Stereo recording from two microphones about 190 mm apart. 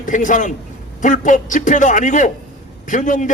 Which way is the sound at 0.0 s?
40° left (ahead or behind).